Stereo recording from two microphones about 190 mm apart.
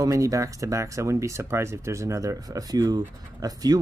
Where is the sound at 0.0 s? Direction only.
15° right (ahead or behind).